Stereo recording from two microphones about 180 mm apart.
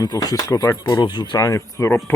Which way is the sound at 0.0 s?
20° left (ahead or behind).